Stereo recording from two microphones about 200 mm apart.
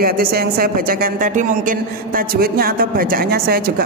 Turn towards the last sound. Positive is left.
turn(degrees=-50)  # may be behind; listen again after turning